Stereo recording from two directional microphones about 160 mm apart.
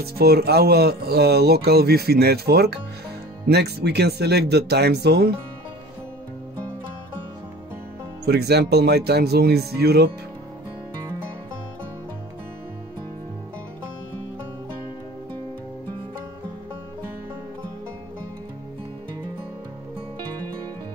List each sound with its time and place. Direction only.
0.0 s speech: 80° right
8.3 s speech: 90° right